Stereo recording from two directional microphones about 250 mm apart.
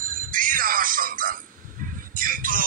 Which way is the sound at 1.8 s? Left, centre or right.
Right.